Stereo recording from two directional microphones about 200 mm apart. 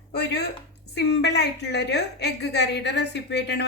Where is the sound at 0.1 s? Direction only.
55° left (ahead or behind).